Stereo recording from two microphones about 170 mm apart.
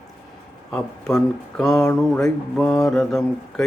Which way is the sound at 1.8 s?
15° left (ahead or behind).